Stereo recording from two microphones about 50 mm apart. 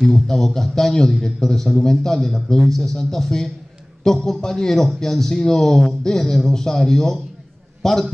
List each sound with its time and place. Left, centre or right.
0.0 s a man's voice: centre